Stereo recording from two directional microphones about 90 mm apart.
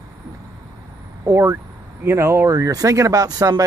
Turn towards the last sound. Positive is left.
turn(degrees=-40)  # may be behind; listen again after turning